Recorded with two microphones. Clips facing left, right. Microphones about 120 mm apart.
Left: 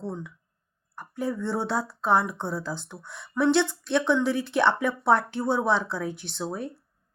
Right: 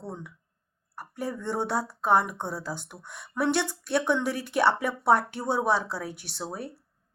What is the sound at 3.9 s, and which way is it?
Speech, 40° right (ahead or behind).